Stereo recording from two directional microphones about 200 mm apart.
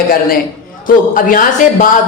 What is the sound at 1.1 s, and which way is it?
Speech, 45° left (ahead or behind).